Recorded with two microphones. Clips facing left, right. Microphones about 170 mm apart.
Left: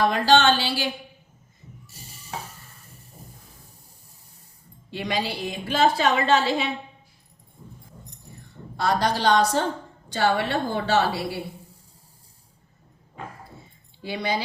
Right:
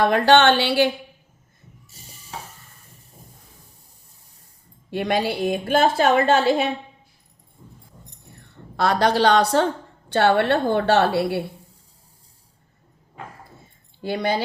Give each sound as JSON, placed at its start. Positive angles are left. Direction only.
{"t": 0.0, "sound": "a woman's voice", "side_deg": -60}
{"t": 4.9, "sound": "a woman's voice", "side_deg": -55}
{"t": 8.4, "sound": "a woman's voice", "side_deg": -65}
{"t": 14.0, "sound": "a woman's voice", "side_deg": -50}